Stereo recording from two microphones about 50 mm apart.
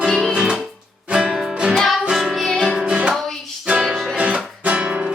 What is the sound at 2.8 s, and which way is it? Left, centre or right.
Music, right.